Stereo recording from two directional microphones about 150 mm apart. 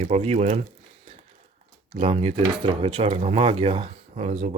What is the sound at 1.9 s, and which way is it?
Speech, 40° right (ahead or behind).